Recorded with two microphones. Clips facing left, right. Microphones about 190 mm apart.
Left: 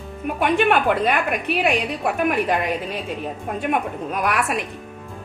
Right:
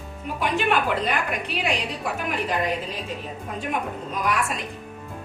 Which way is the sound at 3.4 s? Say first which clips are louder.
Left 5 dB; 60° left (ahead or behind).